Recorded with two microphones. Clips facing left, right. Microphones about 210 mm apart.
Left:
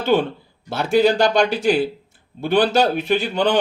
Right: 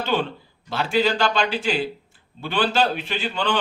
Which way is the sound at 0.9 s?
50° left (ahead or behind).